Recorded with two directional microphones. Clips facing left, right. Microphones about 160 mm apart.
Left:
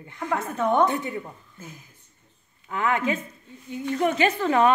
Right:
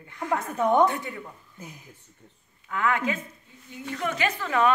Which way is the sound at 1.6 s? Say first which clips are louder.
Even; 15° right (ahead or behind).